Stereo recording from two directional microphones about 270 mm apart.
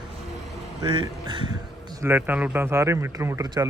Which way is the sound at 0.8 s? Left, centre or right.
Centre.